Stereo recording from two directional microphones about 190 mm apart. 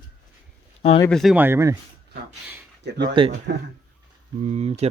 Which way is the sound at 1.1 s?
Centre (ahead or behind).